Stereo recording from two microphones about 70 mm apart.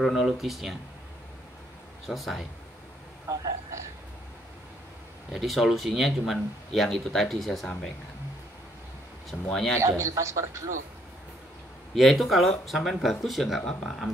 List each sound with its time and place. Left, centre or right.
0.0 s speech: centre
2.0 s speech: centre
3.3 s a sound: right
5.3 s speech: centre
9.3 s speech: centre
9.8 s speech: right
11.9 s speech: centre